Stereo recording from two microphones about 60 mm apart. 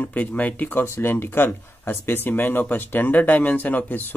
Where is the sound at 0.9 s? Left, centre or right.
Left.